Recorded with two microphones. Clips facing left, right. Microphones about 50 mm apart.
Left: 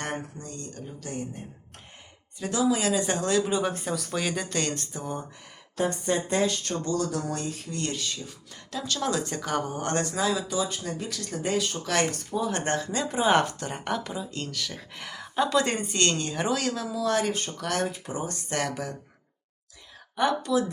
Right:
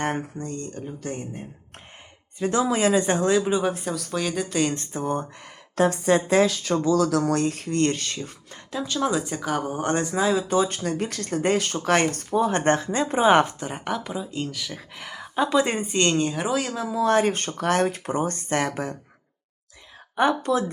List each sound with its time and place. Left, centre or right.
0.3 s speech: right; by 3.6 s centre
3.6 s speech: centre
4.7 s speech: right
5.7 s a woman's voice: right
8.7 s speech: centre
10.3 s speech: right; by 16.8 s centre
16.8 s speech: right
17.3 s speech: right
18.3 s speech: right
20.4 s speech: right